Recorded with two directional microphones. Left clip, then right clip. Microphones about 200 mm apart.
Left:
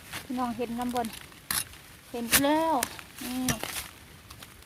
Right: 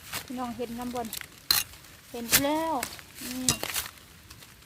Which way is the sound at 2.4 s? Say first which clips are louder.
Left 3 dB; 20° left (ahead or behind).